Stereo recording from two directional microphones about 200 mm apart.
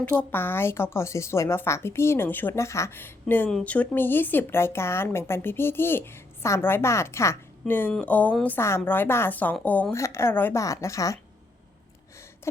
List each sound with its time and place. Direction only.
0.0 s speech: 10° left (ahead or behind)